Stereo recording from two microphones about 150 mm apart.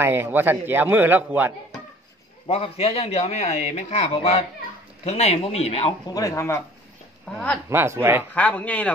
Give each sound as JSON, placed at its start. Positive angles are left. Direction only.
{"t": 0.0, "sound": "a man's voice", "side_deg": -15}
{"t": 2.4, "sound": "speech", "side_deg": 40}
{"t": 6.0, "sound": "speech", "side_deg": 25}
{"t": 7.3, "sound": "speech", "side_deg": 5}
{"t": 7.7, "sound": "a man's voice", "side_deg": -15}
{"t": 8.4, "sound": "a man's voice", "side_deg": 10}